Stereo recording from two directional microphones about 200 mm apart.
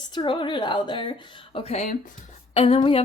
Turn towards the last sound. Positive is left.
turn(degrees=25)  # may be behind; listen again after turning